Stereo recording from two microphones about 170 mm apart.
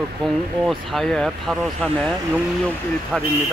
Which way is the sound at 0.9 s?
Centre (ahead or behind).